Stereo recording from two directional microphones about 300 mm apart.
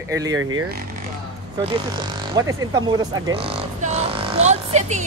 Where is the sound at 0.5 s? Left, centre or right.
Right.